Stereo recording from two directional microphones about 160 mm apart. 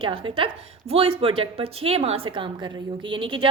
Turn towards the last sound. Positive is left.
turn(degrees=-35)  # may be behind; listen again after turning